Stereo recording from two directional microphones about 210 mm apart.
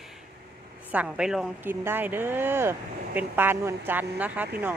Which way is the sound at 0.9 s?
5° right (ahead or behind).